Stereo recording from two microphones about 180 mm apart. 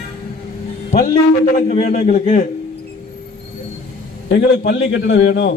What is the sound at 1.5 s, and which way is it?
Speech, 35° left (ahead or behind).